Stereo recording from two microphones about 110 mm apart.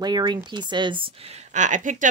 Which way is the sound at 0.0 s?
40° right (ahead or behind).